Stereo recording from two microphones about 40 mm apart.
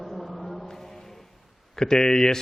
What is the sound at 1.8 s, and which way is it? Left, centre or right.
Mantra, centre.